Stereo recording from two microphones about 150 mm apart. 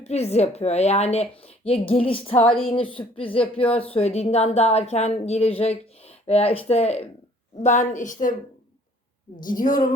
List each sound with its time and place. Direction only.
0.0 s a woman's voice: 45° left (ahead or behind)
9.3 s a woman's voice: 65° left (ahead or behind)